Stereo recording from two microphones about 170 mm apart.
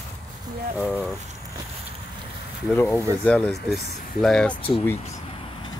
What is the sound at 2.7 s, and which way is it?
Speech, 10° left (ahead or behind).